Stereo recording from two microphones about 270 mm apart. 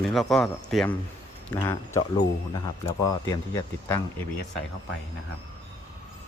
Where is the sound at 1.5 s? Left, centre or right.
Centre.